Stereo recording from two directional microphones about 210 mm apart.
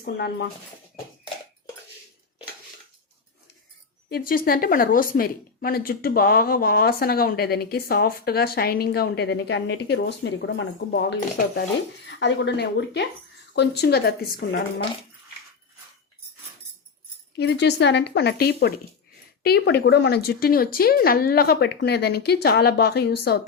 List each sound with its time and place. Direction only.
0.0 s a woman's voice: 50° left (ahead or behind)
4.1 s a woman's voice: 45° left (ahead or behind)
17.3 s a woman's voice: 55° left (ahead or behind)